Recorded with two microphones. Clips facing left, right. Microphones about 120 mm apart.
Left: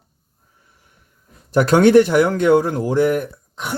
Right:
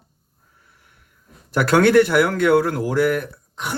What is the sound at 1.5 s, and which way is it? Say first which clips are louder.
Speech: left 3 dB; 20° left (ahead or behind).